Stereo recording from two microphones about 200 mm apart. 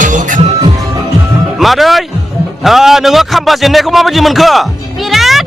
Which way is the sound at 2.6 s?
Centre (ahead or behind).